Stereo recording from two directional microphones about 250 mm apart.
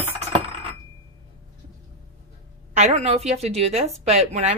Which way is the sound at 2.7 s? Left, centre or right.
Right.